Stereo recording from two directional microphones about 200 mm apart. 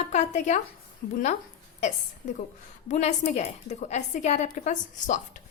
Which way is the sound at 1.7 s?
35° left (ahead or behind).